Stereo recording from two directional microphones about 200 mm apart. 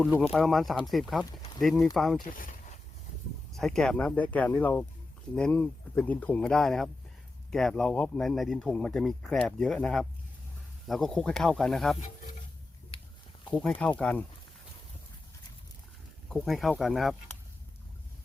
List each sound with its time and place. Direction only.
0.2 s speech: centre (ahead or behind)
2.3 s a sound: 40° left (ahead or behind)
3.5 s speech: centre (ahead or behind)
12.9 s a sound: 25° left (ahead or behind)
13.5 s speech: 5° left (ahead or behind)
16.3 s speech: centre (ahead or behind)